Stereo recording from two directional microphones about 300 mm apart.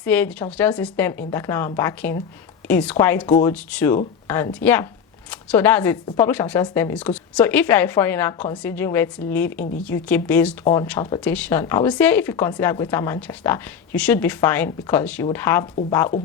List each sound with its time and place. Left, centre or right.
0.0 s speech: centre